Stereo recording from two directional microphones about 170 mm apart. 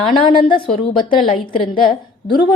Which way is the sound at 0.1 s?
30° left (ahead or behind).